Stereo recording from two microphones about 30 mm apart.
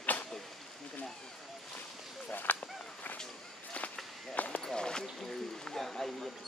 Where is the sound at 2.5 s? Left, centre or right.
Left.